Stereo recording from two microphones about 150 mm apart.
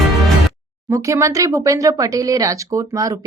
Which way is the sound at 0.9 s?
20° right (ahead or behind).